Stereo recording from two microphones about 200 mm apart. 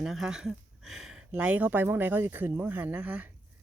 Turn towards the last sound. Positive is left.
turn(degrees=-5)  # may be behind; listen again after turning